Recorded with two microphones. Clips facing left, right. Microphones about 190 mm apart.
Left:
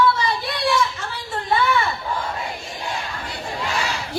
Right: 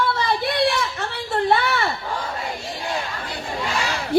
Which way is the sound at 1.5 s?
75° right (ahead or behind).